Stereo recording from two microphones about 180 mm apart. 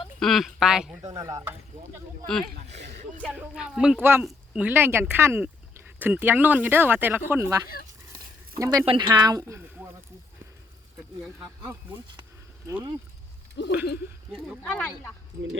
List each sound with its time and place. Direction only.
0.2 s speech: centre (ahead or behind)
1.1 s speech: 20° right (ahead or behind)
2.2 s speech: 5° left (ahead or behind)
2.7 s speech: 35° right (ahead or behind)
3.3 s speech: 5° right (ahead or behind)
8.1 s a sound: 15° right (ahead or behind)
8.9 s speech: 25° right (ahead or behind)
12.6 s speech: 15° right (ahead or behind)
13.6 s speech: 70° left (ahead or behind)
14.3 s speech: centre (ahead or behind)